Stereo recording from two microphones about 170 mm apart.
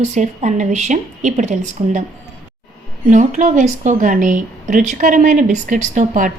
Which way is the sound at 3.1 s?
50° right (ahead or behind).